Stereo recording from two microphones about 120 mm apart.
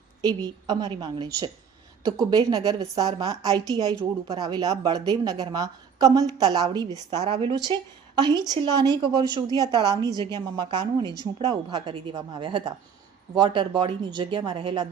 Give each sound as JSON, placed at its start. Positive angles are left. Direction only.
{"t": 0.2, "sound": "a woman's voice", "side_deg": -30}